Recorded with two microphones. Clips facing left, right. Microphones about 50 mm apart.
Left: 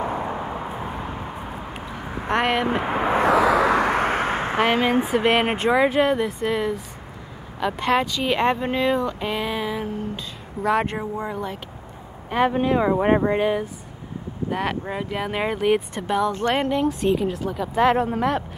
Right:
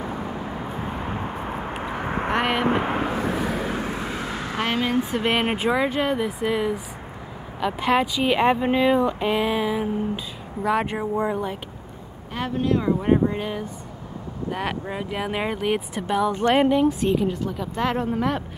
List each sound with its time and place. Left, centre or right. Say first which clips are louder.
0.0 s vehicle: left 4 dB; left
0.6 s vehicle: left 1 dB; left
1.0 s vehicle: right 3 dB; centre
2.0 s a sound: right 6 dB; right
2.2 s a sound: left 2 dB; centre
3.3 s vehicle: left 9 dB; left
4.6 s speech: left 2 dB; left
5.1 s speech: left 3 dB; centre
12.3 s speech: left 4 dB; left
12.9 s speech: left 2 dB; left
13.4 s speech: left 7 dB; centre
14.5 s speech: left 2 dB; centre
16.3 s speech: right 2 dB; centre
16.5 s speech: right 3 dB; centre